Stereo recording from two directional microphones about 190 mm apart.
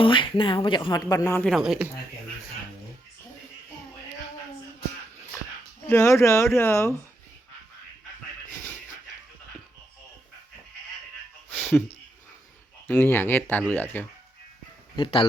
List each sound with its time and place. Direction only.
0.0 s speech: 25° left (ahead or behind)
1.5 s speech: centre (ahead or behind)
5.9 s speech: 15° left (ahead or behind)
12.9 s speech: 10° left (ahead or behind)
14.9 s speech: 25° left (ahead or behind)